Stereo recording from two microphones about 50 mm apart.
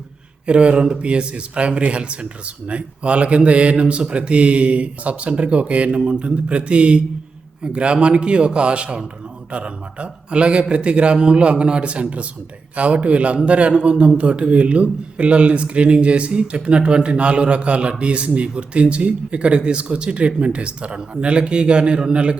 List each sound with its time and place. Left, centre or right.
0.4 s a man's voice: right